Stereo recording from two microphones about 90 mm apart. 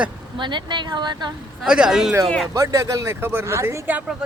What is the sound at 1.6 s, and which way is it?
Speech, 10° right (ahead or behind).